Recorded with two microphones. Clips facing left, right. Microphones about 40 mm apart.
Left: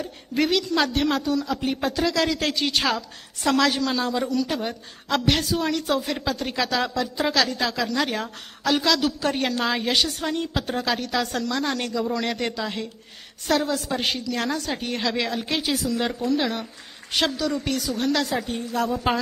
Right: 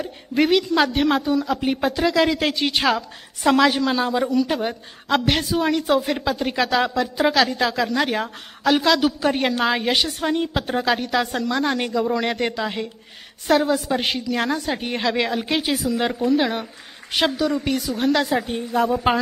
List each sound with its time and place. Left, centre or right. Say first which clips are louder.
0.0 s a man's voice: right 4 dB; centre